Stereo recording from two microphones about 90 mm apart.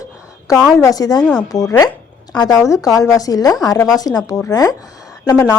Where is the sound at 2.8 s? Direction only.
40° left (ahead or behind).